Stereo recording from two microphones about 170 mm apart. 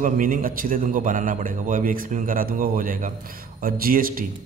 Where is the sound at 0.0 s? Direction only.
55° right (ahead or behind).